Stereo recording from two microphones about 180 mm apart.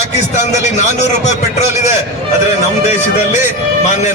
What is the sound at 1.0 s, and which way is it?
Speech, 40° left (ahead or behind).